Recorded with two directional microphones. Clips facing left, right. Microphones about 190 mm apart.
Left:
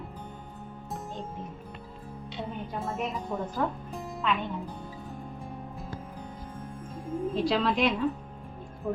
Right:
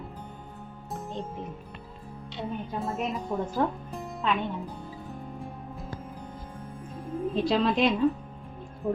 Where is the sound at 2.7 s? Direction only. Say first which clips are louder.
Right 1 dB; centre (ahead or behind).